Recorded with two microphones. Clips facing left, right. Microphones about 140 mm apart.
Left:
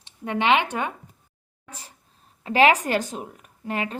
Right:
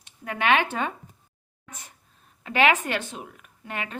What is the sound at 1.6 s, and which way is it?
A woman's voice, 35° left (ahead or behind).